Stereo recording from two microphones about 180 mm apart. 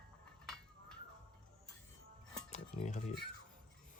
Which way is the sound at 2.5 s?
40° left (ahead or behind).